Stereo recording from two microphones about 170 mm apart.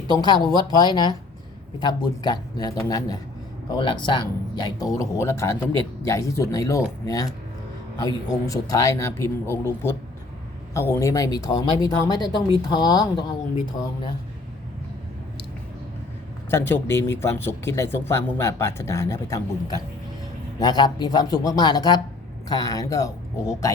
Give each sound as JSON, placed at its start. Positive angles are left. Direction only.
{"t": 0.7, "sound": "speech", "side_deg": 25}
{"t": 16.5, "sound": "speech", "side_deg": 15}